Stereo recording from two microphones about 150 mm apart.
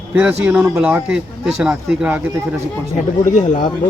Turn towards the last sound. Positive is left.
turn(degrees=50)  # may be behind; listen again after turning